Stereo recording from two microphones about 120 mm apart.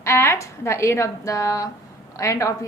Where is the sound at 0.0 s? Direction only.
20° left (ahead or behind).